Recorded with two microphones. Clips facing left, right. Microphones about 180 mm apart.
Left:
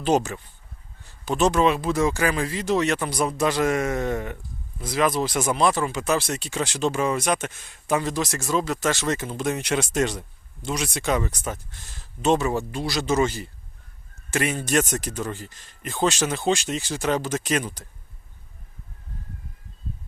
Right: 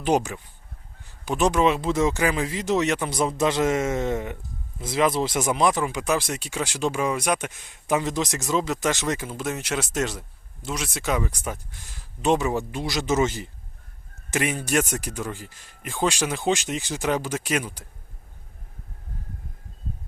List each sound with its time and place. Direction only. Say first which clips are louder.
0.0 s speech: left 1 dB; 15° right (ahead or behind)